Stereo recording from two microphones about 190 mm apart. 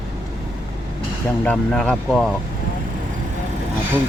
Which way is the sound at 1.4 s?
5° left (ahead or behind).